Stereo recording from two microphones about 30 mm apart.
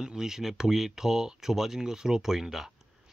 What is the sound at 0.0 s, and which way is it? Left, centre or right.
Speech, right.